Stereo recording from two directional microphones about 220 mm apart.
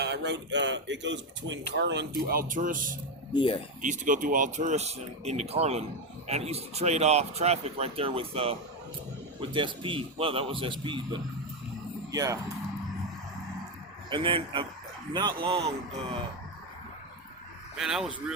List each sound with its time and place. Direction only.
0.0 s speech: 50° right (ahead or behind)
3.3 s speech: 25° left (ahead or behind)
3.8 s speech: 35° right (ahead or behind); by 12.4 s 15° right (ahead or behind)
14.1 s speech: 20° right (ahead or behind)
17.7 s speech: centre (ahead or behind)